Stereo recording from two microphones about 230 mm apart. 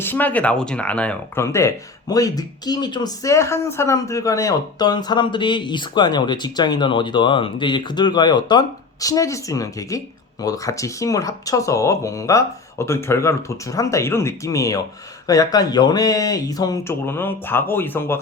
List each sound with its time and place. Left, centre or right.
0.0 s speech: centre